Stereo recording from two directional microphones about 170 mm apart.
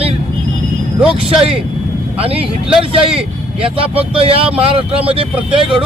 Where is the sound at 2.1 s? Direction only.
35° right (ahead or behind).